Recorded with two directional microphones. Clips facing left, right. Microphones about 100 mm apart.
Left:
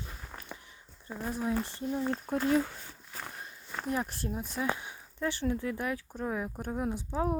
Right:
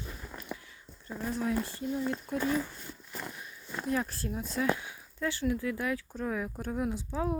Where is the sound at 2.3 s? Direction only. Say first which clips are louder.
Left 6 dB; 65° left (ahead or behind).